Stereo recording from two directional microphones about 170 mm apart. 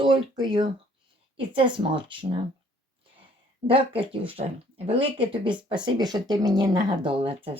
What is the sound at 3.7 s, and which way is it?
Speech, 30° right (ahead or behind).